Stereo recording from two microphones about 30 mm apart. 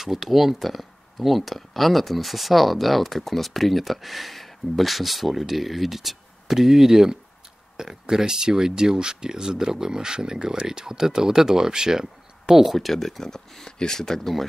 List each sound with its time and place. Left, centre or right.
0.0 s speech: centre
12.6 s speech: centre